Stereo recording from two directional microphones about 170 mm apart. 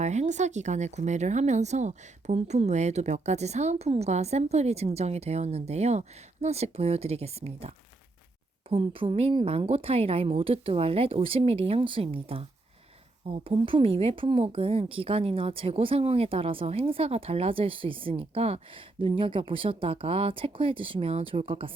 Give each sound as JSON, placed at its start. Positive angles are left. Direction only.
{"t": 0.0, "sound": "a woman's voice", "side_deg": -40}